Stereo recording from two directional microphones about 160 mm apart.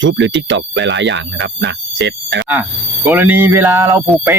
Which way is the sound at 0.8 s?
90° right.